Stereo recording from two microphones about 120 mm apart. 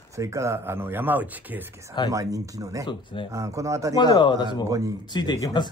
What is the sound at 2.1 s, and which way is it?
Speech, 30° right (ahead or behind).